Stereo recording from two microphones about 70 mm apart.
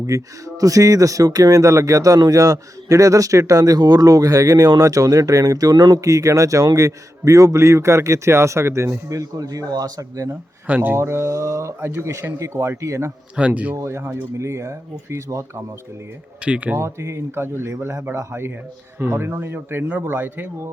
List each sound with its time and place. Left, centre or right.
0.0 s speech: right
6.0 s a man's voice: right
10.7 s speech: right
10.9 s a man's voice: right
13.3 s speech: centre
13.7 s a man's voice: right
16.4 s speech: centre
16.8 s a man's voice: right